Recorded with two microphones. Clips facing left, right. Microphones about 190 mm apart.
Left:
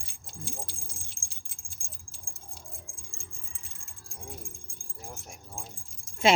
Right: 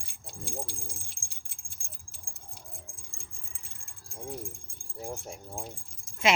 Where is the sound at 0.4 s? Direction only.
60° right (ahead or behind).